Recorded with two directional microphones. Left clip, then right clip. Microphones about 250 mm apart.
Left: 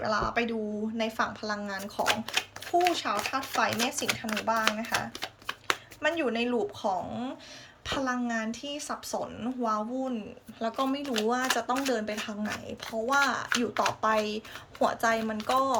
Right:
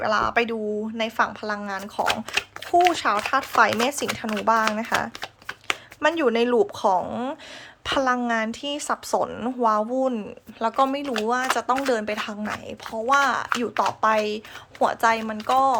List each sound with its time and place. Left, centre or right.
0.0 s speech: centre
2.8 s speech: centre
6.0 s speech: centre